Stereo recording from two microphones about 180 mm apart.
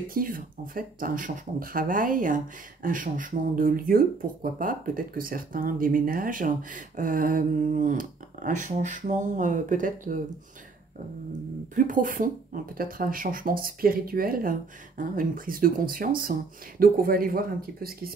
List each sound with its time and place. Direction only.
0.1 s speech: 50° right (ahead or behind)
11.7 s speech: 45° right (ahead or behind)